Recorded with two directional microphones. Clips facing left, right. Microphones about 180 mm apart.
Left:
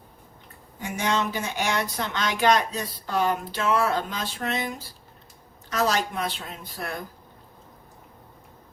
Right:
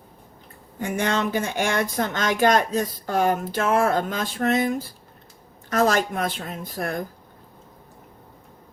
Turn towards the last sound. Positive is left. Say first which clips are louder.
# right 6 dB
turn(degrees=-50)  # may be behind; listen again after turning